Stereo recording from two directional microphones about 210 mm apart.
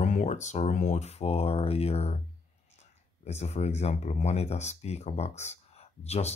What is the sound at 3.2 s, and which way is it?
Speech, 30° left (ahead or behind).